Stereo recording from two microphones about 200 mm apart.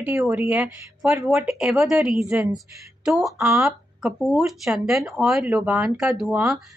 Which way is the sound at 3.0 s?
5° right (ahead or behind).